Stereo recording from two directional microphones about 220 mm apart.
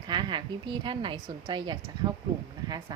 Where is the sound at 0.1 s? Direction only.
20° right (ahead or behind).